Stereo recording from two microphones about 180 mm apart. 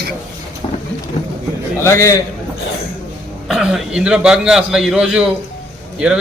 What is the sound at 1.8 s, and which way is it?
Speech, 15° left (ahead or behind).